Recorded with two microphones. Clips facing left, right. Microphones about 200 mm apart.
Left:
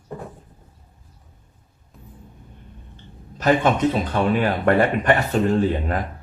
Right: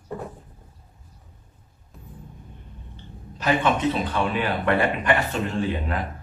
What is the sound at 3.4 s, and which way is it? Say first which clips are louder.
A man's voice: left 4 dB; 40° left (ahead or behind).